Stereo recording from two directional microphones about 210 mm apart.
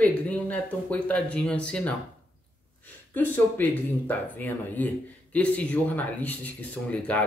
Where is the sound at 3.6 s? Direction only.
10° left (ahead or behind).